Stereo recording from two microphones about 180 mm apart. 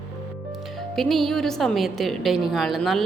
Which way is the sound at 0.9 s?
Centre (ahead or behind).